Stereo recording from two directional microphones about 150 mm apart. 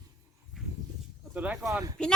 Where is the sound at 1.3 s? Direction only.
10° right (ahead or behind).